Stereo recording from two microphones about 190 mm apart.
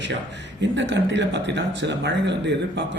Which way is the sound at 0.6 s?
70° right (ahead or behind).